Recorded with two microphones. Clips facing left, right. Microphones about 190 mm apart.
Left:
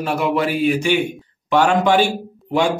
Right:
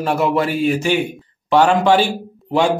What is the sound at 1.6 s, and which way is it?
Speech, 15° left (ahead or behind).